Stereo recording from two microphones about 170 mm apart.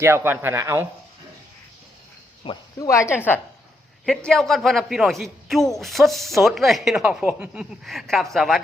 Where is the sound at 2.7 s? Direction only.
20° left (ahead or behind).